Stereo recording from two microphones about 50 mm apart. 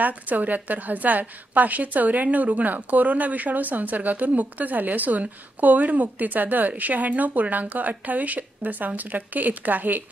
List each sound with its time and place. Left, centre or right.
0.0 s a woman's voice: right